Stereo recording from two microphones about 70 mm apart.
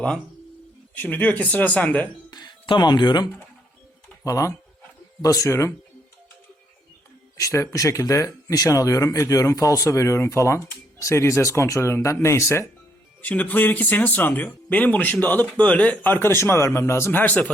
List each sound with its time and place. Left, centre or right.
0.9 s speech: left
2.3 s speech: left
4.2 s speech: left
7.3 s speech: left
13.2 s speech: left
17.1 s speech: left